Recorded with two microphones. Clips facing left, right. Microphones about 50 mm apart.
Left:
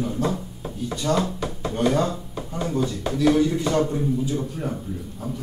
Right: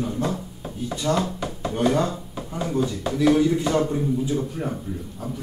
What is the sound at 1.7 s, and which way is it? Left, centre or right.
A man's voice, centre.